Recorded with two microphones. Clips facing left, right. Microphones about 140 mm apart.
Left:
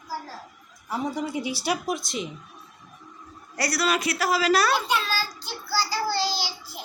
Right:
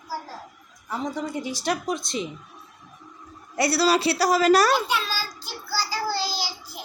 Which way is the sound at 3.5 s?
25° right (ahead or behind).